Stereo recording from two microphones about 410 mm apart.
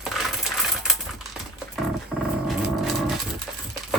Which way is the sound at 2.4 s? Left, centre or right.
Centre.